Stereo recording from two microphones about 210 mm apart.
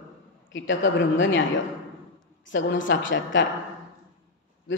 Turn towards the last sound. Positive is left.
turn(degrees=65)  # may be behind; listen again after turning